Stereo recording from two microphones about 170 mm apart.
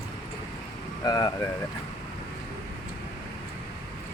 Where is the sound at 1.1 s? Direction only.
25° left (ahead or behind).